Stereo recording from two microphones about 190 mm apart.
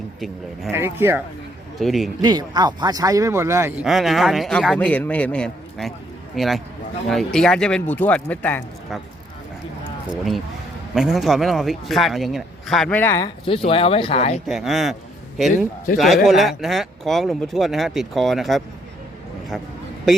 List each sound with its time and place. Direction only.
0.7 s speech: 10° right (ahead or behind)
1.8 s speech: centre (ahead or behind)
2.2 s speech: 20° right (ahead or behind)
3.8 s speech: centre (ahead or behind)
10.9 s speech: centre (ahead or behind)
13.2 s speech: 25° left (ahead or behind)
14.4 s speech: centre (ahead or behind)